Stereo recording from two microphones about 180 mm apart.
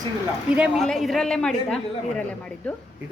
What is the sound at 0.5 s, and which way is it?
A woman's voice, 5° right (ahead or behind).